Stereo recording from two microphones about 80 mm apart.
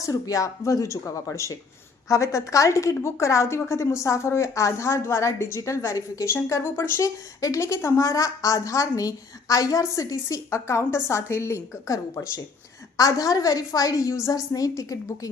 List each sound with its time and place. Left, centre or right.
0.0 s speech: left